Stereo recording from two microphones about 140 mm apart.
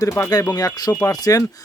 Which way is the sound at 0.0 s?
25° left (ahead or behind).